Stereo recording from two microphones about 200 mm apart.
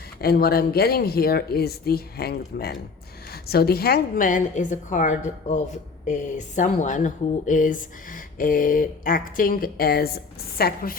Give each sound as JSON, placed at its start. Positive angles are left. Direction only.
{"t": 0.2, "sound": "a woman's voice", "side_deg": 50}